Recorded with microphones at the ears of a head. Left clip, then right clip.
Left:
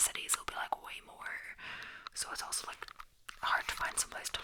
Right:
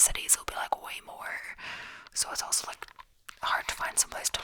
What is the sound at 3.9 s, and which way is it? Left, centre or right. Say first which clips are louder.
Speech: right 7 dB; right.